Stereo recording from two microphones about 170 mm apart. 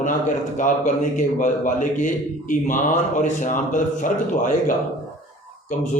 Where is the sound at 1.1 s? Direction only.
50° left (ahead or behind).